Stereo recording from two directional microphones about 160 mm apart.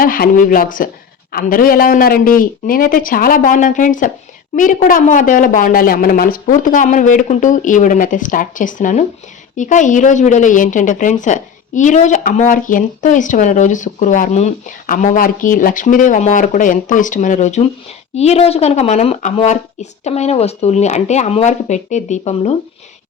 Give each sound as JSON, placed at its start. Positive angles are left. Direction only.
{"t": 0.0, "sound": "a woman's voice", "side_deg": 65}